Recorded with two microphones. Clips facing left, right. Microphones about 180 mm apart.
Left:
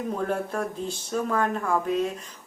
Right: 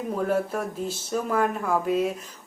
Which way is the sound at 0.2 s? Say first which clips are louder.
Right 6 dB; 5° right (ahead or behind).